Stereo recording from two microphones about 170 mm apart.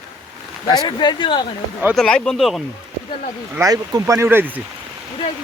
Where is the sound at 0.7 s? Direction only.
25° left (ahead or behind).